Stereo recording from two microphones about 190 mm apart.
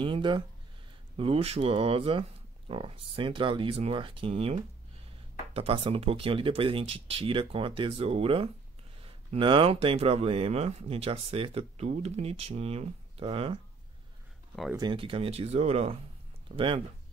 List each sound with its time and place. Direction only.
0.0 s speech: 25° right (ahead or behind)
14.8 s speech: 25° right (ahead or behind)